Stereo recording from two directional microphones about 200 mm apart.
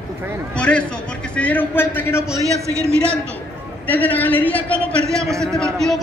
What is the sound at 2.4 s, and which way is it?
Speech, 15° right (ahead or behind).